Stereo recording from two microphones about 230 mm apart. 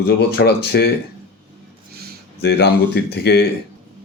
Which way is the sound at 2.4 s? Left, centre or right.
Left.